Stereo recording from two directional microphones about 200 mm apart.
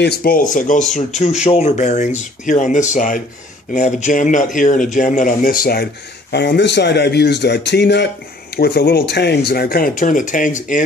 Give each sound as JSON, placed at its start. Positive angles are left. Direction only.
{"t": 0.0, "sound": "a man's voice", "side_deg": 50}